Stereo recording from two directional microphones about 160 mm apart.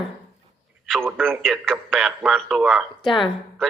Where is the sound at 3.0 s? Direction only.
30° left (ahead or behind).